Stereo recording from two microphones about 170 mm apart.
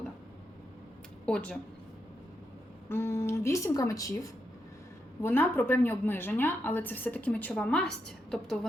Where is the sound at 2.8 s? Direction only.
15° left (ahead or behind).